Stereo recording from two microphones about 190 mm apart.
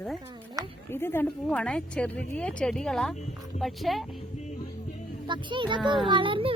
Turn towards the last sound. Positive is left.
turn(degrees=-25)  # may be behind; listen again after turning